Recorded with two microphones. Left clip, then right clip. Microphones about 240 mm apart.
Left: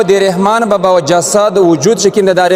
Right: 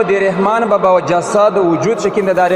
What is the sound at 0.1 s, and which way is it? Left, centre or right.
A man's voice, left.